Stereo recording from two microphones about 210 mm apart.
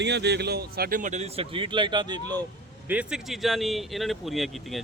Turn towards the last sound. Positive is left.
turn(degrees=0)  # may be behind; listen again after turning